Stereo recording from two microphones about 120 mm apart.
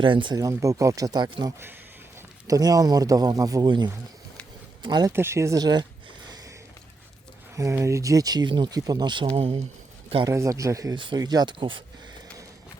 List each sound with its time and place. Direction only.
0.0 s speech: 45° right (ahead or behind)
0.3 s speech: 30° right (ahead or behind)
5.1 s speech: 20° right (ahead or behind)
7.5 s speech: 25° right (ahead or behind)
9.3 s speech: 55° right (ahead or behind)
10.2 s speech: 25° right (ahead or behind)
10.9 s speech: 40° right (ahead or behind)